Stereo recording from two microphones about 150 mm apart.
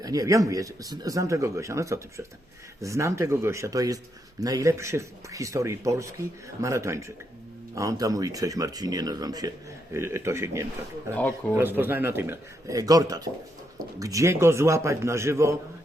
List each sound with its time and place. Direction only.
0.0 s a man's voice: 25° right (ahead or behind)